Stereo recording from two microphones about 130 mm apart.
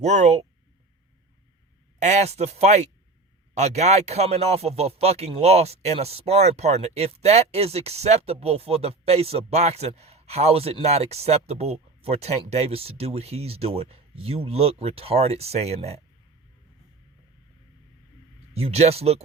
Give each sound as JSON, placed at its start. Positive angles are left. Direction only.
{"t": 0.0, "sound": "speech", "side_deg": -60}
{"t": 2.0, "sound": "speech", "side_deg": -60}
{"t": 18.5, "sound": "speech", "side_deg": -50}